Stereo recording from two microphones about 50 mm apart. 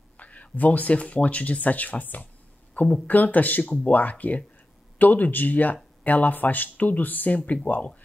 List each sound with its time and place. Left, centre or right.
0.2 s speech: left